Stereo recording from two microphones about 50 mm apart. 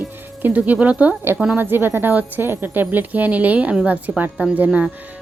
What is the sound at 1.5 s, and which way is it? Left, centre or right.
Speech, right.